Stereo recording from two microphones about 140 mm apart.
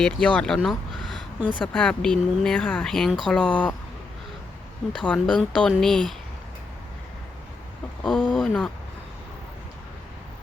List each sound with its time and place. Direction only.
0.0 s speech: 5° left (ahead or behind)
4.9 s speech: 5° left (ahead or behind)
8.0 s a sound: centre (ahead or behind)